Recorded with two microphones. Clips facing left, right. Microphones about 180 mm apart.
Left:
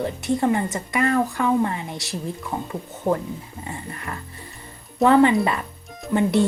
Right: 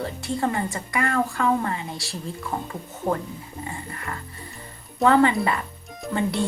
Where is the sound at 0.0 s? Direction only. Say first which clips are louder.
Left 4 dB; 20° left (ahead or behind).